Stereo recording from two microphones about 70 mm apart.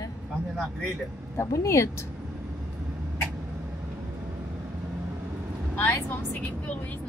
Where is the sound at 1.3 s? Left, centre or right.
Left.